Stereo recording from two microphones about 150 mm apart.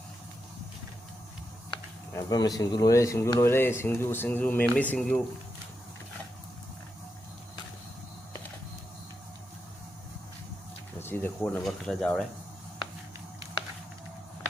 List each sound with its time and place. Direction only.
2.1 s speech: 25° left (ahead or behind); by 5.2 s 5° left (ahead or behind)
11.0 s speech: 15° left (ahead or behind)